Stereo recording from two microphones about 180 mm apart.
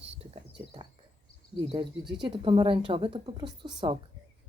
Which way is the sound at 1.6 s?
25° right (ahead or behind).